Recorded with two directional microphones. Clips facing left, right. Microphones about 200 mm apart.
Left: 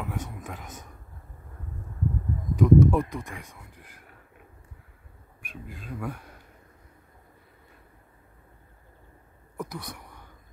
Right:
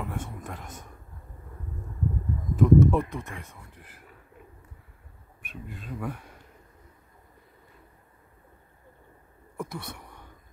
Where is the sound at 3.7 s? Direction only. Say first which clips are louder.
Even; 5° right (ahead or behind).